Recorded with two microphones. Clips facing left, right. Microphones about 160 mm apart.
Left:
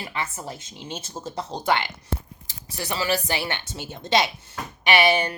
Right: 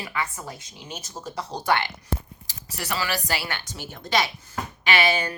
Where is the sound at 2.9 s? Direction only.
20° left (ahead or behind).